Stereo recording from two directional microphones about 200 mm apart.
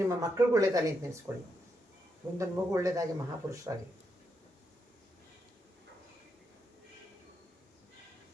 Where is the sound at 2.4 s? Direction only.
15° right (ahead or behind).